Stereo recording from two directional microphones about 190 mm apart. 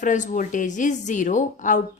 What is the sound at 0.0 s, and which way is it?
Speech, 40° left (ahead or behind).